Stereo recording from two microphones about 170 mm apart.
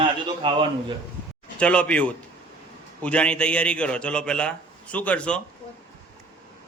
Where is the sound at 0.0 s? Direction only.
30° right (ahead or behind).